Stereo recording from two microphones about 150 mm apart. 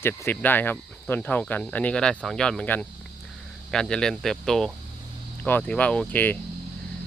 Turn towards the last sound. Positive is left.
turn(degrees=10)  # may be behind; listen again after turning